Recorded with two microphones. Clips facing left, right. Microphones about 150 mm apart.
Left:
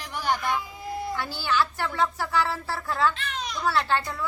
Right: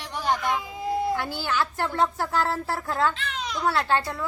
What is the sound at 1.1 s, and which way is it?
A woman's voice, 50° right (ahead or behind).